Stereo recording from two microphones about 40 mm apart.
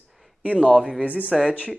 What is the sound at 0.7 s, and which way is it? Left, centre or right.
Speech, centre.